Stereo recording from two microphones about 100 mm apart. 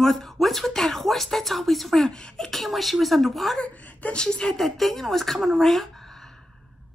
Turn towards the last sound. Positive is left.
turn(degrees=5)  # may be behind; listen again after turning